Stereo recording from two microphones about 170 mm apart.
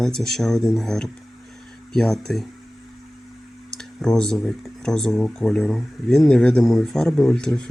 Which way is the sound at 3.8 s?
5° left (ahead or behind).